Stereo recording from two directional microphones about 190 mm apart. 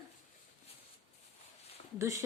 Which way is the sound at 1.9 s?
15° right (ahead or behind).